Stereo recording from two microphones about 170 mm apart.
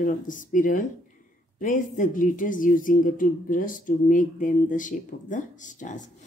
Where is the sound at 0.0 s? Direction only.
50° left (ahead or behind).